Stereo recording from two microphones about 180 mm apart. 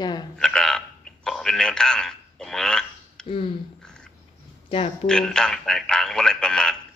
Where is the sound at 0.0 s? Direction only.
25° left (ahead or behind).